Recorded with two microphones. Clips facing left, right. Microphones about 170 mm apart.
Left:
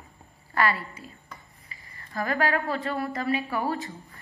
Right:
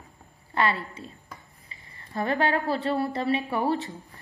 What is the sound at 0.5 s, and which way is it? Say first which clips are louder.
A woman's voice: even; 25° right (ahead or behind).